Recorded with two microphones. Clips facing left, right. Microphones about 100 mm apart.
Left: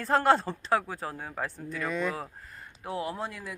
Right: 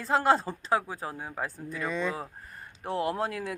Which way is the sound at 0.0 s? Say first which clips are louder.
Left 1 dB; 5° right (ahead or behind).